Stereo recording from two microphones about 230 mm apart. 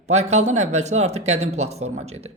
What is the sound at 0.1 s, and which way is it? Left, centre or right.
Speech, right.